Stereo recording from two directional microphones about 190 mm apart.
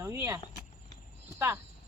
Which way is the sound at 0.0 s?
15° right (ahead or behind).